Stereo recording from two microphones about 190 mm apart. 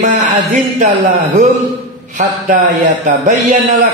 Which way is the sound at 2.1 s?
40° right (ahead or behind).